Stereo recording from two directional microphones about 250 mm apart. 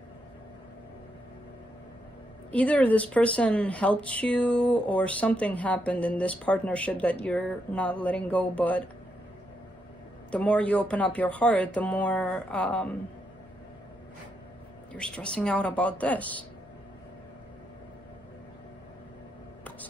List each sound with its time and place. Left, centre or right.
2.5 s speech: centre
10.3 s speech: centre
15.1 s speech: centre